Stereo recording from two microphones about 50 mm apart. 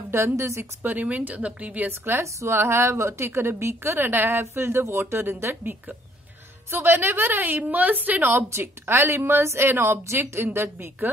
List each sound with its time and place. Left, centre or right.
0.1 s a woman's voice: right
0.8 s speech: right
1.9 s a woman's voice: right
2.2 s a woman's voice: right
5.6 s speech: right
6.7 s a woman's voice: right
8.5 s a woman's voice: right